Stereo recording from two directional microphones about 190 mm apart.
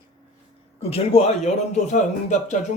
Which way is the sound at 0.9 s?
35° left (ahead or behind).